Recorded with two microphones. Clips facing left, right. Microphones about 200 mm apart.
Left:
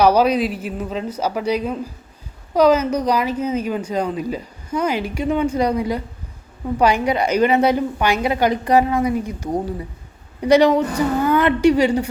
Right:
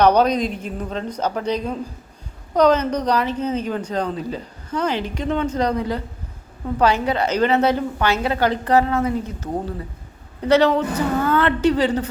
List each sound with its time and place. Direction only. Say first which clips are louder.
0.0 s a woman's voice: left 1 dB; 5° left (ahead or behind)